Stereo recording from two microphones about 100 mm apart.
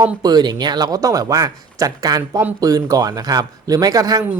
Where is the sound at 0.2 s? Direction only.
45° right (ahead or behind).